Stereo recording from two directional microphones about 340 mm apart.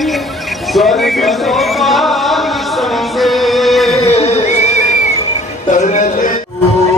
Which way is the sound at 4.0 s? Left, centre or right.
Centre.